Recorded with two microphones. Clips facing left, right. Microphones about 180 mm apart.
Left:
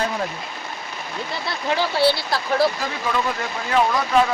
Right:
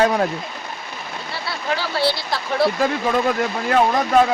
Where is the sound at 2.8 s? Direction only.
55° right (ahead or behind).